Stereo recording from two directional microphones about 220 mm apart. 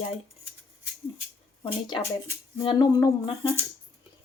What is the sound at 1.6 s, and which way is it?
Speech, 20° left (ahead or behind).